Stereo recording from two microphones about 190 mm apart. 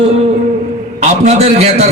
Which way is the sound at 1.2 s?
35° right (ahead or behind).